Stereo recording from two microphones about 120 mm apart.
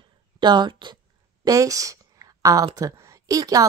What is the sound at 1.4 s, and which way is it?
Speech, 30° right (ahead or behind).